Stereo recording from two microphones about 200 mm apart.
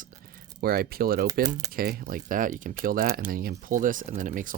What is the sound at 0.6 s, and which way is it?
Speech, 50° right (ahead or behind).